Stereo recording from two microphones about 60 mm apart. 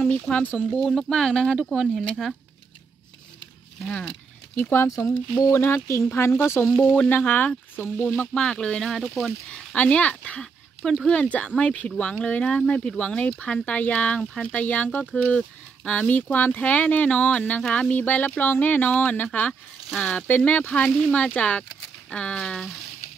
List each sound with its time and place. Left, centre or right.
0.1 s speech: left
0.7 s speech: centre
4.6 s speech: left
6.8 s speech: left
8.3 s speech: centre
9.5 s a sound: centre
9.8 s speech: centre
10.4 s a sound: centre
11.1 s speech: centre